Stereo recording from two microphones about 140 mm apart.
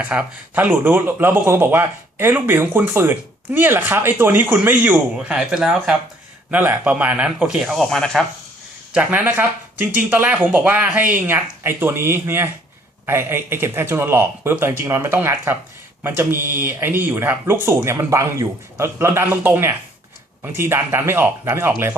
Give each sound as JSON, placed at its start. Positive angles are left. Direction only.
{"t": 0.0, "sound": "speech", "side_deg": -10}
{"t": 8.9, "sound": "speech", "side_deg": -10}